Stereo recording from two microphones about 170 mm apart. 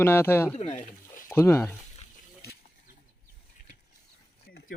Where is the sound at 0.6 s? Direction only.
45° left (ahead or behind).